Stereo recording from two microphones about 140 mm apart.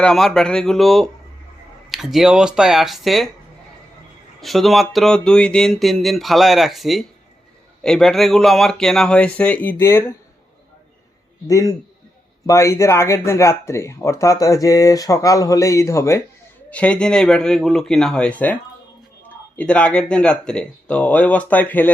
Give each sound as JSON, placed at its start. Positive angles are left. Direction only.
{"t": 0.0, "sound": "speech", "side_deg": 5}
{"t": 4.4, "sound": "speech", "side_deg": 0}
{"t": 11.4, "sound": "speech", "side_deg": 25}
{"t": 16.6, "sound": "speech", "side_deg": 10}
{"t": 19.5, "sound": "speech", "side_deg": 10}